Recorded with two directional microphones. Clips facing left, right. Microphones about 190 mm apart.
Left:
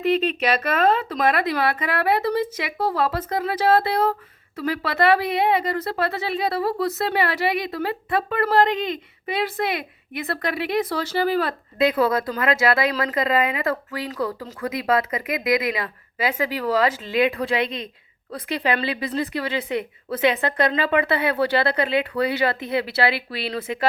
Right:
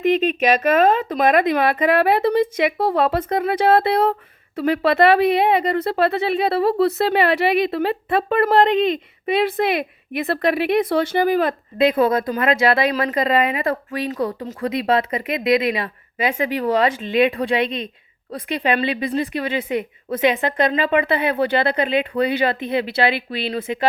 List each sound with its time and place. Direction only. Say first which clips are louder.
0.0 s speech: right 3 dB; 15° right (ahead or behind)
3.6 s speech: right 2 dB; 60° right (ahead or behind)
4.6 s speech: right 6 dB; 25° right (ahead or behind)